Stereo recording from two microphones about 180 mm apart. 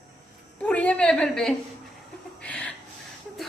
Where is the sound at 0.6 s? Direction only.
10° left (ahead or behind).